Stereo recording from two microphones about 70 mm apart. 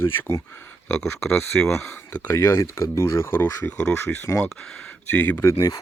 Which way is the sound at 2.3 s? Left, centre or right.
Left.